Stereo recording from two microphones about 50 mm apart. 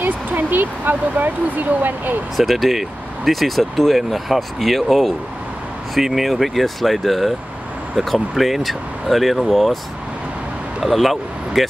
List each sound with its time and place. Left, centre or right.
0.0 s speech: right
2.3 s speech: centre
10.8 s speech: centre